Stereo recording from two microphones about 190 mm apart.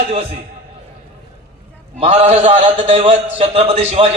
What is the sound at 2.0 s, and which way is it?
A man's voice, 30° right (ahead or behind).